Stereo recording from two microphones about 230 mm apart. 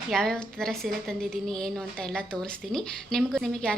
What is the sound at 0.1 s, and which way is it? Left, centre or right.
A woman's voice, centre.